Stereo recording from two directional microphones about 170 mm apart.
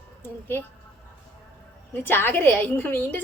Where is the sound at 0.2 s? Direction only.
15° left (ahead or behind).